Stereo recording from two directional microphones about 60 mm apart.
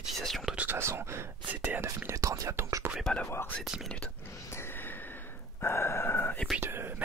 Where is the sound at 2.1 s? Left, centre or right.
Right.